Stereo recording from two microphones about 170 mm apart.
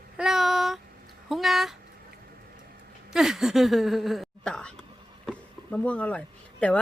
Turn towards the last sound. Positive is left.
turn(degrees=5)  # may be behind; listen again after turning